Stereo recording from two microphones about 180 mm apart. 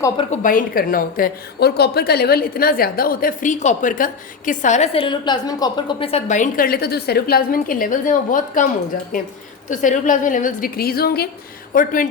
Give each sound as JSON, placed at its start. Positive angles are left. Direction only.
{"t": 0.4, "sound": "a woman's voice", "side_deg": 50}
{"t": 11.7, "sound": "a woman's voice", "side_deg": 50}